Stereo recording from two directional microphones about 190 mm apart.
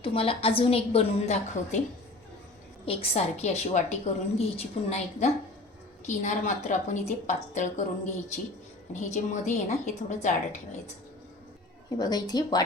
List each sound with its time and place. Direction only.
0.0 s a woman's voice: 30° left (ahead or behind)
2.8 s a woman's voice: 30° left (ahead or behind)
8.9 s a woman's voice: 40° left (ahead or behind)
11.9 s a woman's voice: 20° left (ahead or behind)